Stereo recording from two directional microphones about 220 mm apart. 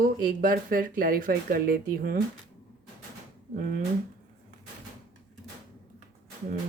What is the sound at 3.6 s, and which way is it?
Speech, 40° right (ahead or behind).